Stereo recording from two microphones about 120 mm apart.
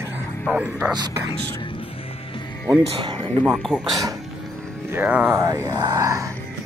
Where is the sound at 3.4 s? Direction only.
5° right (ahead or behind).